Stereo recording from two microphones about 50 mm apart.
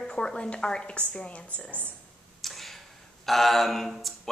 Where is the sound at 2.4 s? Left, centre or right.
Centre.